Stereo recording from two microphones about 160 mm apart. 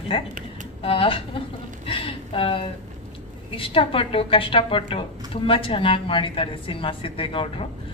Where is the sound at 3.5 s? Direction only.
35° left (ahead or behind).